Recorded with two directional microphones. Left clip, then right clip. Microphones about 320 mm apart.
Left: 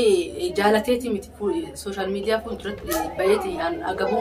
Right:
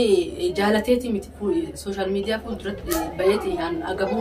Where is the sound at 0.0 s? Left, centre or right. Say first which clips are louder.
Even; centre.